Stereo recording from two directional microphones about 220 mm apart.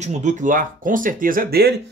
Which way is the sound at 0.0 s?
35° right (ahead or behind).